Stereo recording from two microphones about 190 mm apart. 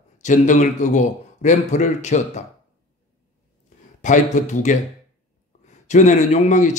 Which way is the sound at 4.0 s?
40° left (ahead or behind).